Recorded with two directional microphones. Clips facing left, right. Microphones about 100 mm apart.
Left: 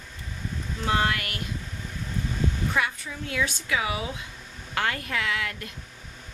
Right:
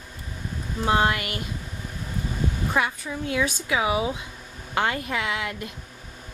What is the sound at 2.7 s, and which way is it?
Speech, 20° right (ahead or behind).